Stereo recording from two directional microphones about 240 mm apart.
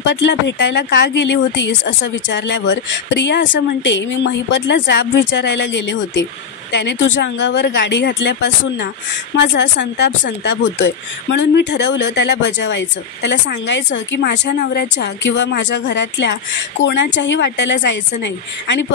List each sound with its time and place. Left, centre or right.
0.0 s speech: left